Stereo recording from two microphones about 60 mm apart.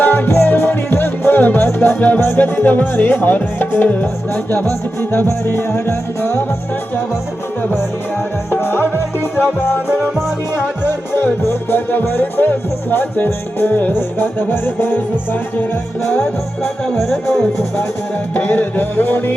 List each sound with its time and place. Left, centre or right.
0.0 s music: left
2.0 s music: left
5.1 s music: left
8.6 s music: left
10.8 s music: left
16.0 s music: centre
16.9 s music: centre
18.3 s music: left